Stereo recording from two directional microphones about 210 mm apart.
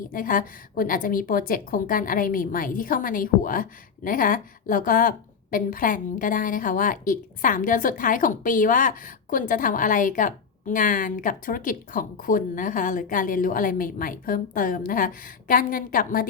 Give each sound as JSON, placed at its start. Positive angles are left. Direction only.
{"t": 0.1, "sound": "a woman's voice", "side_deg": 40}